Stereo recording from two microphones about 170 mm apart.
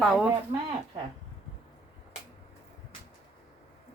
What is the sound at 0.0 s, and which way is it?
Speech, 5° right (ahead or behind).